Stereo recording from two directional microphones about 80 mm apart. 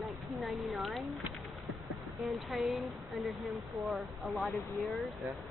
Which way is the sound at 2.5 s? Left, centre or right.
Centre.